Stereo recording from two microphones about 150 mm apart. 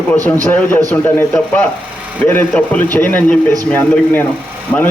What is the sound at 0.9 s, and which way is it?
A man's voice, 10° left (ahead or behind).